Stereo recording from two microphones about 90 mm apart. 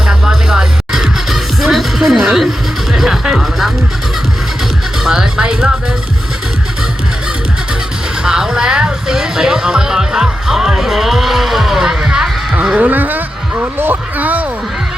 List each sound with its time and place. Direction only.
0.1 s music: 5° right (ahead or behind)
5.0 s music: 5° right (ahead or behind)
8.2 s music: 5° right (ahead or behind)
12.6 s a sound: 15° right (ahead or behind)